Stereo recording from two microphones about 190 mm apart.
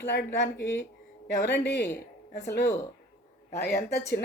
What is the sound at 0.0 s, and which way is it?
A woman's voice, 60° left (ahead or behind).